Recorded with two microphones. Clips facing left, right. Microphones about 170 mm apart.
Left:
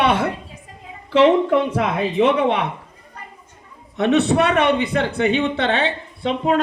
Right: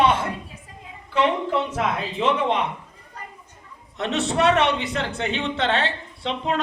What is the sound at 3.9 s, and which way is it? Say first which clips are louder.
A woman's voice: left 7 dB; 60° left (ahead or behind).